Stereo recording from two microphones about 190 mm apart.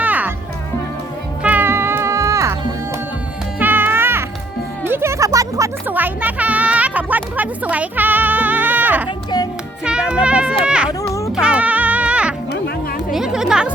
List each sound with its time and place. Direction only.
0.0 s music: 10° right (ahead or behind)
1.4 s music: 10° right (ahead or behind)
3.6 s music: 10° right (ahead or behind)
9.0 s music: 20° left (ahead or behind)
9.8 s music: 5° right (ahead or behind)